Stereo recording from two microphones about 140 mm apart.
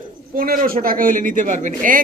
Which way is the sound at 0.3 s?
90° right.